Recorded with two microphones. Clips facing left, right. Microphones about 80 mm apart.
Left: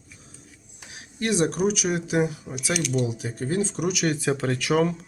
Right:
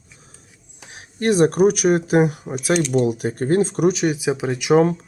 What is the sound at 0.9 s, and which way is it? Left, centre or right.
Speech, right.